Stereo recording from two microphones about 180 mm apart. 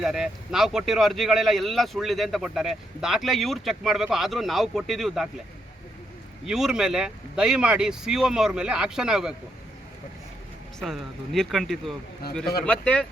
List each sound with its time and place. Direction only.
0.0 s speech: centre (ahead or behind)
6.4 s speech: 5° right (ahead or behind)
10.8 s speech: centre (ahead or behind)
12.2 s speech: 60° left (ahead or behind)
12.6 s speech: 5° left (ahead or behind)